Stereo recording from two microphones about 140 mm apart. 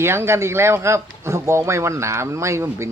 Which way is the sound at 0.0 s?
20° right (ahead or behind).